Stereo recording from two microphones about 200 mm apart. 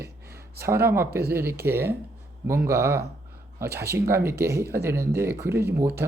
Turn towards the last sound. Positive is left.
turn(degrees=-10)  # may be behind; listen again after turning